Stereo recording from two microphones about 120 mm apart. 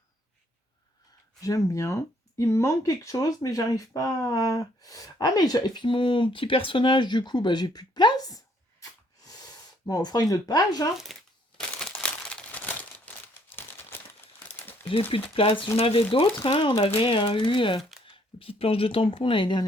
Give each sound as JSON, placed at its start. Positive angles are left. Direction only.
{"t": 1.4, "sound": "speech", "side_deg": 30}
{"t": 8.8, "sound": "a sound", "side_deg": 30}
{"t": 11.8, "sound": "crumpling", "side_deg": 10}
{"t": 15.1, "sound": "speech", "side_deg": 50}